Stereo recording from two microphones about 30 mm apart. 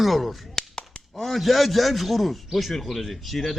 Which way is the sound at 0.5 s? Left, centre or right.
Left.